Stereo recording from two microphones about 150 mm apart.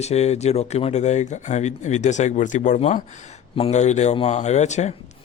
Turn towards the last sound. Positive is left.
turn(degrees=50)  # may be behind; listen again after turning